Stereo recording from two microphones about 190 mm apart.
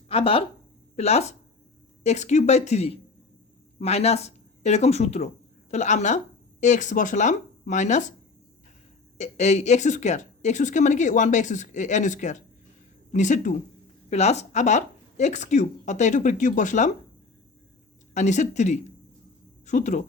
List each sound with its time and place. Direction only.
0.1 s speech: 30° left (ahead or behind)
9.1 s speech: 35° left (ahead or behind)
18.1 s speech: 40° left (ahead or behind)